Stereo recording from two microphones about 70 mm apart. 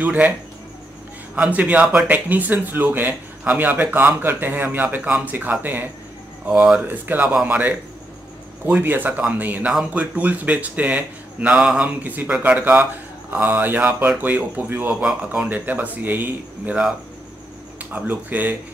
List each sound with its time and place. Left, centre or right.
0.0 s speech: right
1.5 s a man's voice: centre
2.0 s speech: right
11.6 s a man's voice: centre
12.0 s speech: right
14.9 s speech: centre